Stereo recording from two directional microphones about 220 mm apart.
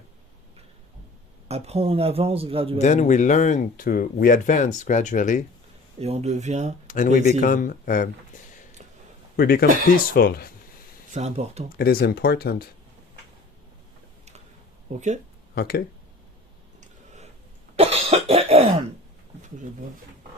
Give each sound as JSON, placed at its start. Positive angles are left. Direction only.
{"t": 1.5, "sound": "a man's voice", "side_deg": -30}
{"t": 2.7, "sound": "speech", "side_deg": 30}
{"t": 6.0, "sound": "speech", "side_deg": -30}
{"t": 6.8, "sound": "speech", "side_deg": 35}
{"t": 9.3, "sound": "speech", "side_deg": 45}
{"t": 11.1, "sound": "a man's voice", "side_deg": -30}
{"t": 11.8, "sound": "speech", "side_deg": 45}
{"t": 14.9, "sound": "speech", "side_deg": -30}
{"t": 15.5, "sound": "speech", "side_deg": 45}
{"t": 17.7, "sound": "cough", "side_deg": -30}